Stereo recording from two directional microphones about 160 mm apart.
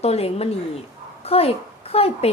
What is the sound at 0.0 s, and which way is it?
A woman's voice, 40° left (ahead or behind).